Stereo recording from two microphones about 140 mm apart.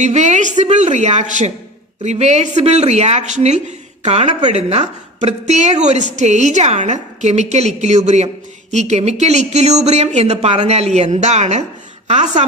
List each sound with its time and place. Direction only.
0.0 s a woman's voice: 55° right (ahead or behind)